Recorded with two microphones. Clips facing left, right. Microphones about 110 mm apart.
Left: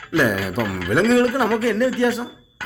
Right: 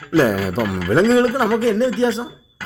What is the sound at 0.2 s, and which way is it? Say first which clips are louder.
A man's voice: right 3 dB; 35° right (ahead or behind).